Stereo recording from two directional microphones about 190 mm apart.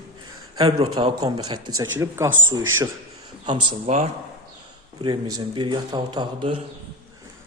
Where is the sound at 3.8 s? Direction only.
35° right (ahead or behind).